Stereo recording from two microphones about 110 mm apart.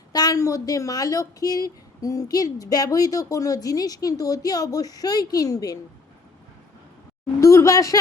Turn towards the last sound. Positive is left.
turn(degrees=30)  # may be behind; listen again after turning